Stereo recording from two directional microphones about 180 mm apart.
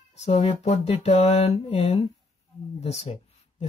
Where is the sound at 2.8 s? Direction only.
35° left (ahead or behind).